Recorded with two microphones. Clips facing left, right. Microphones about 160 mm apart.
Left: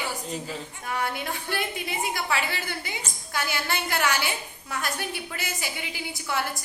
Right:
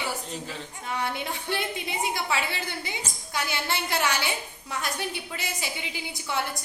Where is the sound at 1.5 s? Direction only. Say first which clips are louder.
Even; 25° right (ahead or behind).